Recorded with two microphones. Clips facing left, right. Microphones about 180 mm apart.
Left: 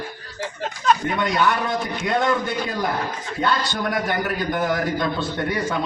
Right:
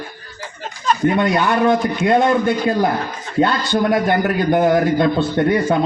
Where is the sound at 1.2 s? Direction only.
55° right (ahead or behind).